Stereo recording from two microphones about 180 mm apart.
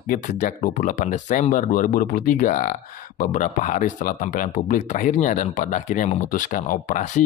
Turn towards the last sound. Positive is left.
turn(degrees=45)  # may be behind; listen again after turning